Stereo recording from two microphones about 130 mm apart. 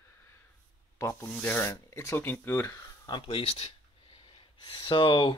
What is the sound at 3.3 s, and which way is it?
Speech, 45° left (ahead or behind).